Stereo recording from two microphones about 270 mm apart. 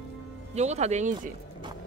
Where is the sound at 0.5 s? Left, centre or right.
Right.